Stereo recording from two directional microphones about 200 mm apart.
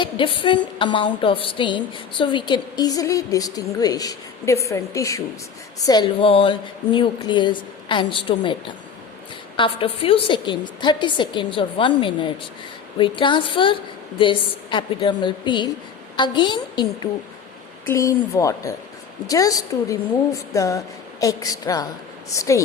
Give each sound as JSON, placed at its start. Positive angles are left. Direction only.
{"t": 0.0, "sound": "a woman's voice", "side_deg": 25}
{"t": 9.6, "sound": "a woman's voice", "side_deg": 25}